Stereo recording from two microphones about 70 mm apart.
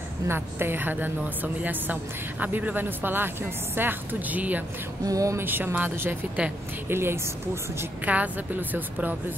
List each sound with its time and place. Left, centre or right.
0.3 s a woman's voice: right
5.0 s music: right
5.4 s a woman's voice: right
8.0 s a woman's voice: right